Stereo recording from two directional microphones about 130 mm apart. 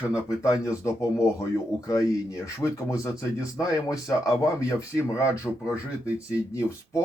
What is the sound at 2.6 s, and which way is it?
Speech, 25° left (ahead or behind).